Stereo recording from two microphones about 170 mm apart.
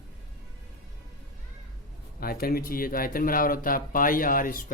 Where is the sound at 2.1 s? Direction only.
60° left (ahead or behind).